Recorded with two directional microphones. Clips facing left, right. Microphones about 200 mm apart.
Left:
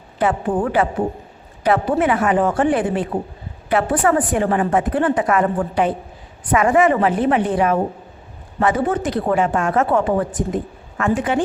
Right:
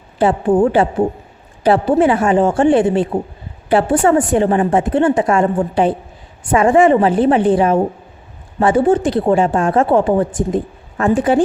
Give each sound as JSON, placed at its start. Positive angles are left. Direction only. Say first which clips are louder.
{"t": 0.2, "sound": "a woman's voice", "louder": "right 6 dB", "side_deg": -30}